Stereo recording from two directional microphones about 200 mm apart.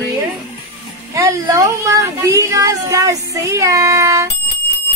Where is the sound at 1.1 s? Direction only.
15° right (ahead or behind).